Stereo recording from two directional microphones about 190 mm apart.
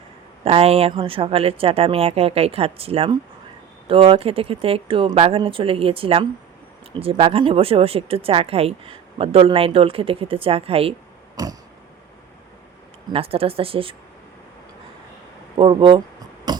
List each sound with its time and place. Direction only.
0.4 s a woman's voice: 30° right (ahead or behind)
11.4 s speech: 20° right (ahead or behind)
13.1 s speech: 30° right (ahead or behind)
15.5 s speech: 25° right (ahead or behind)
16.5 s a sound: 20° right (ahead or behind)